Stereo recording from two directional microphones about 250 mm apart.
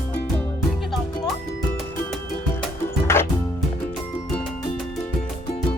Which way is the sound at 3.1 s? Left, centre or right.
Centre.